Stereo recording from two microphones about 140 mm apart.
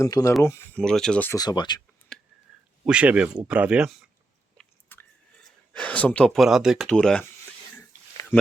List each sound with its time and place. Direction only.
0.0 s speech: 20° left (ahead or behind)
0.8 s speech: 5° left (ahead or behind)
1.3 s speech: 30° left (ahead or behind)
2.1 s a sound: 5° left (ahead or behind)
2.8 s speech: 10° right (ahead or behind)
4.5 s biting: 10° left (ahead or behind)
5.7 s speech: 10° left (ahead or behind)